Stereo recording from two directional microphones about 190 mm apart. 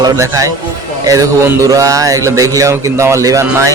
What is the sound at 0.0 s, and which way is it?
Music, 15° right (ahead or behind).